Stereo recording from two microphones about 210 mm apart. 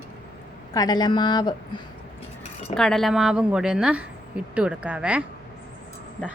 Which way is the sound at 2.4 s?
30° left (ahead or behind).